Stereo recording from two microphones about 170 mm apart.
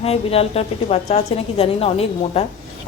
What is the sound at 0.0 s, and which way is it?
A woman's voice, 35° left (ahead or behind).